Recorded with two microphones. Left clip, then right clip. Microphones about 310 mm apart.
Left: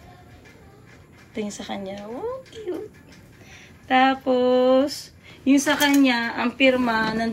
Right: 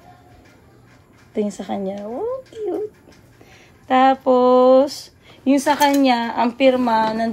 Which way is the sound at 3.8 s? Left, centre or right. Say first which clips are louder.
Right 4 dB; right.